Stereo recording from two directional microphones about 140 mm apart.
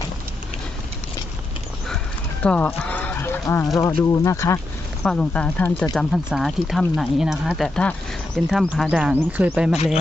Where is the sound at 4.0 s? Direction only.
20° left (ahead or behind).